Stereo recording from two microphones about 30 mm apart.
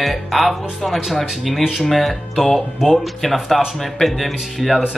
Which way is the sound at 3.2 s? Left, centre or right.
Centre.